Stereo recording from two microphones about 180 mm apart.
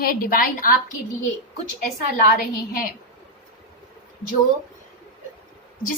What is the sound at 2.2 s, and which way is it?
Speech, 50° left (ahead or behind).